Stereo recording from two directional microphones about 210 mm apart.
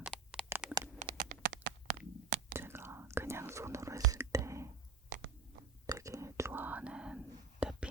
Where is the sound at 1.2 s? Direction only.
40° right (ahead or behind).